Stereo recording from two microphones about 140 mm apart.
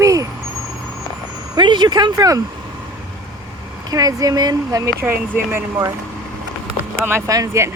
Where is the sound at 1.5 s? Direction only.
35° right (ahead or behind).